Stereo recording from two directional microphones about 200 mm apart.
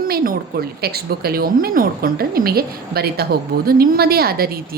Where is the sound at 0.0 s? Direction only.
50° right (ahead or behind).